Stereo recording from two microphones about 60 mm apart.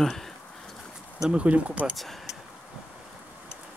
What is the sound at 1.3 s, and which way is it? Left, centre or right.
Speech, right.